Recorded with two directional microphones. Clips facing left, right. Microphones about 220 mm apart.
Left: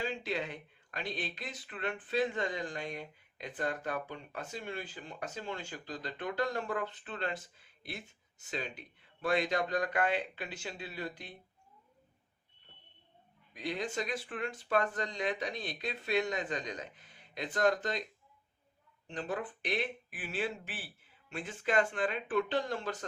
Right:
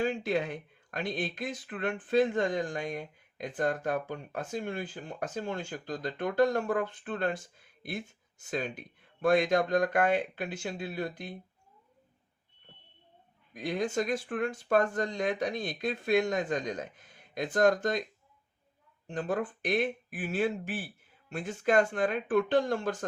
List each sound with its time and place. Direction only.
0.0 s speech: 50° right (ahead or behind)
13.5 s speech: 45° right (ahead or behind)
19.0 s speech: 45° right (ahead or behind)